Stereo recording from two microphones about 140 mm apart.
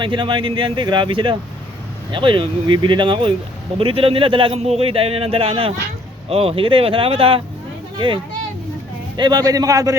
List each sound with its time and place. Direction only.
0.0 s a man's voice: 35° right (ahead or behind)